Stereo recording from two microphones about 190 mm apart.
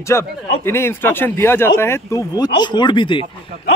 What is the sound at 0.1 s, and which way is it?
A man's voice, 15° left (ahead or behind).